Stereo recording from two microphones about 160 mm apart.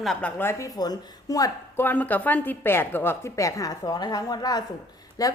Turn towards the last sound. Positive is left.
turn(degrees=20)  # may be behind; listen again after turning